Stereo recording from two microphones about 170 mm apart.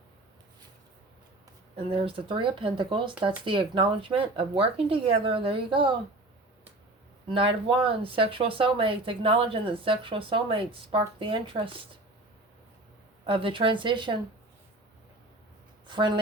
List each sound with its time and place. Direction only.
1.7 s speech: 30° right (ahead or behind)
7.3 s speech: 30° right (ahead or behind)
13.2 s a woman's voice: 30° right (ahead or behind)
15.9 s a woman's voice: 30° right (ahead or behind)